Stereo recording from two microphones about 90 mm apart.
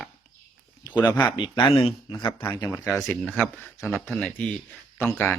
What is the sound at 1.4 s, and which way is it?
Speech, 50° left (ahead or behind).